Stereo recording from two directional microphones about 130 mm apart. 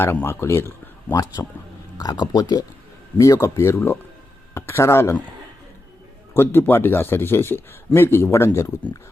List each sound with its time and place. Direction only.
0.0 s speech: 15° left (ahead or behind)
1.1 s speech: 30° left (ahead or behind)
6.3 s speech: 15° left (ahead or behind)